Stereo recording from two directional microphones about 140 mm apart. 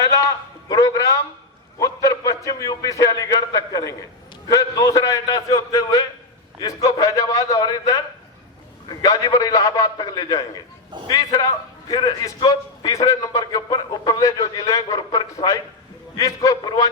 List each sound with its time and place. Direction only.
0.7 s a man's voice: 25° left (ahead or behind)